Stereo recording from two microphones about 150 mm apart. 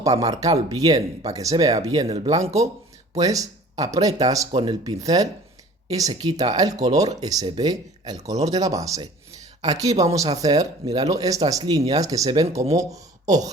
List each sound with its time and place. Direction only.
0.2 s speech: 25° right (ahead or behind)